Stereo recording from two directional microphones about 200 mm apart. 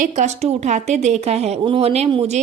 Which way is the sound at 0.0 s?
35° right (ahead or behind).